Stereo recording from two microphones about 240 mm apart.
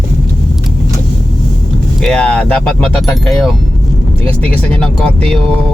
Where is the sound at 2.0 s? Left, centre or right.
Centre.